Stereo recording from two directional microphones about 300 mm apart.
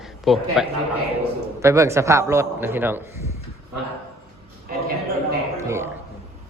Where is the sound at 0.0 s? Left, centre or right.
Centre.